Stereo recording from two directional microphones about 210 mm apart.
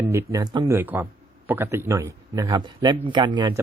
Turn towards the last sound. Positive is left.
turn(degrees=-20)  # may be behind; listen again after turning